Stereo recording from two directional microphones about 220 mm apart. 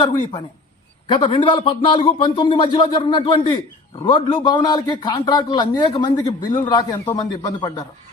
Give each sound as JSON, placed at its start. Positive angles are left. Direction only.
{"t": 1.0, "sound": "a man's voice", "side_deg": 20}